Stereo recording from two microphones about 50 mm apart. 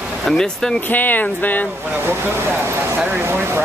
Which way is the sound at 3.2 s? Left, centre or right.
Right.